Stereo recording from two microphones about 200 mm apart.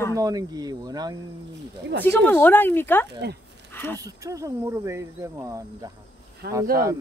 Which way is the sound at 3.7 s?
10° left (ahead or behind).